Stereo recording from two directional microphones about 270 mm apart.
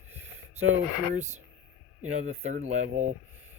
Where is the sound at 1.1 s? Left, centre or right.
Right.